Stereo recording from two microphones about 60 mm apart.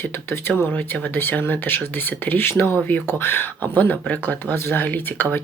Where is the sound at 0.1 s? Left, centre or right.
Left.